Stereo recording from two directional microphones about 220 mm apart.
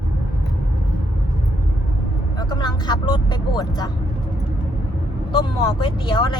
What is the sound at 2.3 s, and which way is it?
Speech, 20° left (ahead or behind).